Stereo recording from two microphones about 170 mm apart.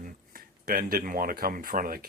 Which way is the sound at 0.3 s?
55° right (ahead or behind).